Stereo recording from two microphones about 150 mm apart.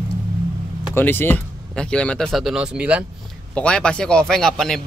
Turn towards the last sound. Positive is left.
turn(degrees=5)  # may be behind; listen again after turning